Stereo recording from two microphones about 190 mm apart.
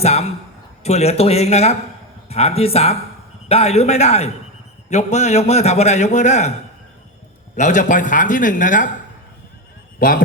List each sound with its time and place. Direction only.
0.0 s a man's voice: 35° left (ahead or behind)
7.5 s speech: 40° left (ahead or behind)